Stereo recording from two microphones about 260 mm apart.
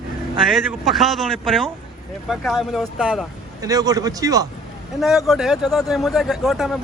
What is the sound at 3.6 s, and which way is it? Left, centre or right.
Speech, centre.